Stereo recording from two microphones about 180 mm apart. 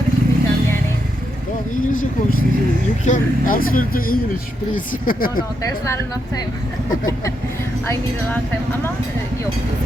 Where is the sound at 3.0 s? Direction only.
45° left (ahead or behind).